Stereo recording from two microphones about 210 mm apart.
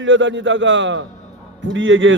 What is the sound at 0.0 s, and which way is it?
A man's voice, 60° right (ahead or behind).